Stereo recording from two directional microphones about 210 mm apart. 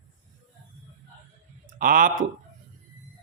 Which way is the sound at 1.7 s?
40° right (ahead or behind).